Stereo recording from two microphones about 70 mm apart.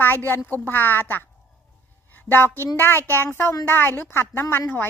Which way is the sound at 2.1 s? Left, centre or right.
Left.